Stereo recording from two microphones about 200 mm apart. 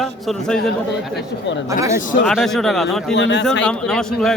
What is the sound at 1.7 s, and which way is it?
Speech, 15° right (ahead or behind).